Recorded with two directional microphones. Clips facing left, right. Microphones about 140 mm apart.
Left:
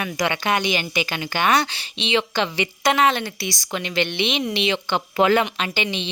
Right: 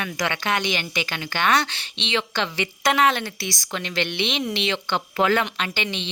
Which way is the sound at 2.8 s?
Centre (ahead or behind).